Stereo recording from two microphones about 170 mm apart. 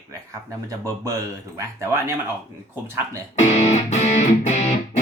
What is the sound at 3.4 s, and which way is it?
Music, 45° left (ahead or behind).